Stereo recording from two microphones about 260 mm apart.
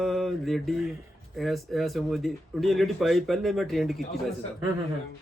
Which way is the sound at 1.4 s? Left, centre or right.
Centre.